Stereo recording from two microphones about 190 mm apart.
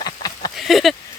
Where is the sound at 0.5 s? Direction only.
Centre (ahead or behind).